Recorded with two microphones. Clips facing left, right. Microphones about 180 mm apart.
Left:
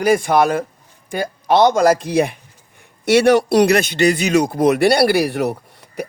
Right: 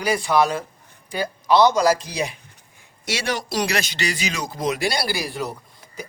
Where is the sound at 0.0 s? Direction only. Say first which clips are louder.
Left 5 dB; 50° left (ahead or behind).